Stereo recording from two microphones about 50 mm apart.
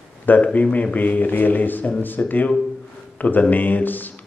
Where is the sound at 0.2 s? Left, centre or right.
Left.